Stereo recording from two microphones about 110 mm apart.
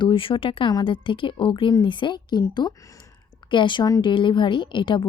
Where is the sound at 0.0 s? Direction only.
50° left (ahead or behind).